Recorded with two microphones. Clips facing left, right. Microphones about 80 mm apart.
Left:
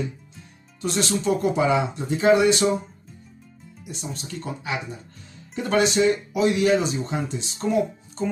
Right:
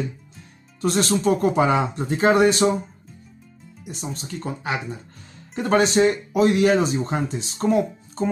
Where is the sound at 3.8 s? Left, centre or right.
Right.